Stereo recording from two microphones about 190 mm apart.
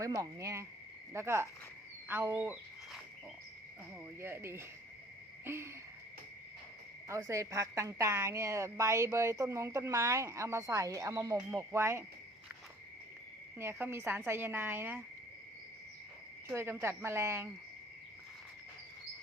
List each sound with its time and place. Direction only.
0.0 s a woman's voice: 15° right (ahead or behind)
4.2 s a woman's voice: 15° right (ahead or behind)
7.1 s a woman's voice: 15° right (ahead or behind)
13.6 s a woman's voice: 10° right (ahead or behind)
16.5 s a woman's voice: 10° right (ahead or behind)